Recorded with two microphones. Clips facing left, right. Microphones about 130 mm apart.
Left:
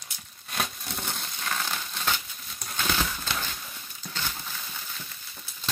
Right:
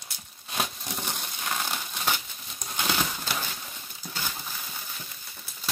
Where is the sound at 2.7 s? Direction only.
15° right (ahead or behind).